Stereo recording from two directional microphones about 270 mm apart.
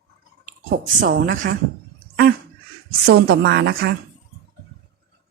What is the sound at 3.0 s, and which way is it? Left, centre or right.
Speech, right.